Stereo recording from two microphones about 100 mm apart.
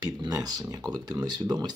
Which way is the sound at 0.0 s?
40° right (ahead or behind).